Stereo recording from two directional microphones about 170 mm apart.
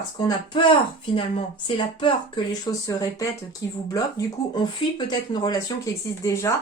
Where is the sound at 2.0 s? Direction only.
30° left (ahead or behind).